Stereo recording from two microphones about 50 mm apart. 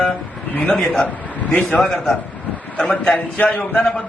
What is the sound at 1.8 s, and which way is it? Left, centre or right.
A man's voice, centre.